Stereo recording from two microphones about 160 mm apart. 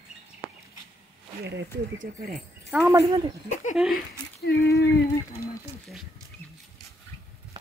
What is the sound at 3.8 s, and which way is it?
Speech, 5° right (ahead or behind).